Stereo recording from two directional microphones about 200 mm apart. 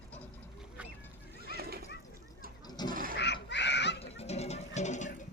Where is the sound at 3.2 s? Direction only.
60° left (ahead or behind).